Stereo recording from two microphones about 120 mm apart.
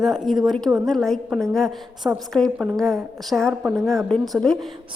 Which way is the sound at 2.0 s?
15° right (ahead or behind).